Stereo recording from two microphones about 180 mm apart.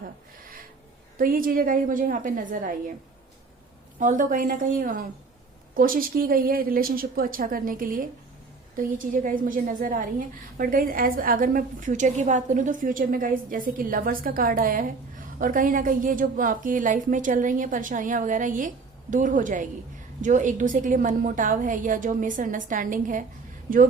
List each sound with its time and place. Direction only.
1.2 s a woman's voice: 50° right (ahead or behind)
4.0 s a woman's voice: 45° right (ahead or behind)